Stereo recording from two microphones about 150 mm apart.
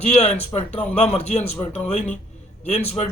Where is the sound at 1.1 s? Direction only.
50° left (ahead or behind).